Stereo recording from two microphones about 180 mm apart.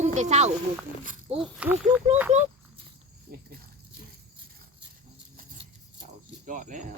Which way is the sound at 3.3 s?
55° right (ahead or behind).